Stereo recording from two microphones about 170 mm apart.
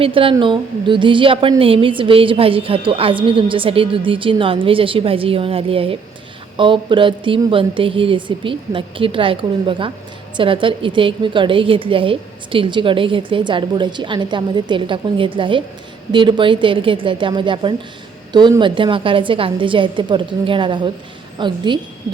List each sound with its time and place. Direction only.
0.0 s a woman's voice: 30° right (ahead or behind)